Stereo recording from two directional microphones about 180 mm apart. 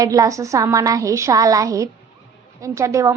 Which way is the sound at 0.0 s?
20° right (ahead or behind).